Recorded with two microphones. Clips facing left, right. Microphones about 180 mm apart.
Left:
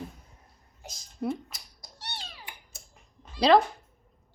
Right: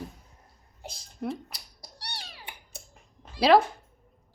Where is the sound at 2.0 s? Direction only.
15° right (ahead or behind).